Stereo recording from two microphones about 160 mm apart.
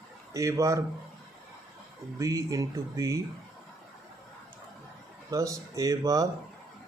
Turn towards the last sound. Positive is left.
turn(degrees=-20)  # may be behind; listen again after turning